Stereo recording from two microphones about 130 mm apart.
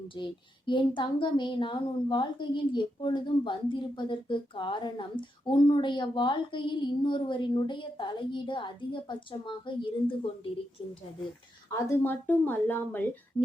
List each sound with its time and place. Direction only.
0.1 s speech: 40° left (ahead or behind)
11.7 s speech: 15° left (ahead or behind)